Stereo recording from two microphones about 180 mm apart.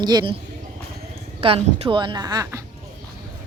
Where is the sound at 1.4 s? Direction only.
35° right (ahead or behind).